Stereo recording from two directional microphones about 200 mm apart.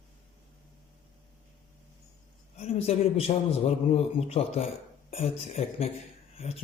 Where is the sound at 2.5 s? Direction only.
30° left (ahead or behind).